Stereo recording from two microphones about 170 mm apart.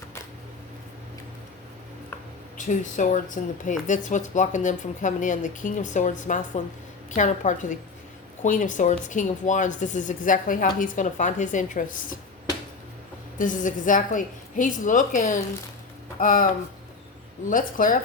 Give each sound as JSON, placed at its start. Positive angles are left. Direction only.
{"t": 2.6, "sound": "speech", "side_deg": 50}
{"t": 13.4, "sound": "speech", "side_deg": 50}
{"t": 17.5, "sound": "speech", "side_deg": 55}